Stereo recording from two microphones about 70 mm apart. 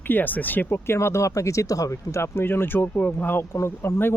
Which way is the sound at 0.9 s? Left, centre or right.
Left.